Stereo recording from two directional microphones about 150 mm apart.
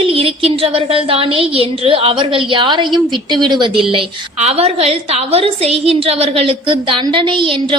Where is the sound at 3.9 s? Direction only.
45° right (ahead or behind).